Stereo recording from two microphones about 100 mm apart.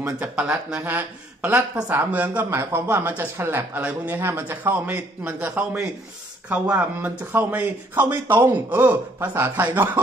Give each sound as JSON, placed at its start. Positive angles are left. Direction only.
{"t": 0.2, "sound": "speech", "side_deg": -10}
{"t": 6.5, "sound": "speech", "side_deg": -15}